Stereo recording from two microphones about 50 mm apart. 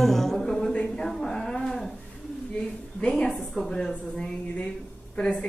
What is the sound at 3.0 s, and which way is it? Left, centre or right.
Speech, centre.